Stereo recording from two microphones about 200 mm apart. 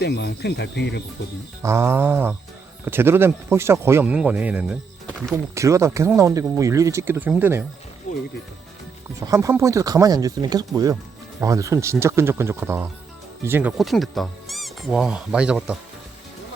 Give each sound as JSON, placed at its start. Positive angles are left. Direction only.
{"t": 0.0, "sound": "speech", "side_deg": 55}
{"t": 1.6, "sound": "speech", "side_deg": -15}
{"t": 5.3, "sound": "speech", "side_deg": -15}
{"t": 9.2, "sound": "speech", "side_deg": -15}